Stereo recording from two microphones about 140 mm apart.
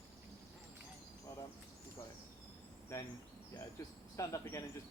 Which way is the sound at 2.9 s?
20° left (ahead or behind).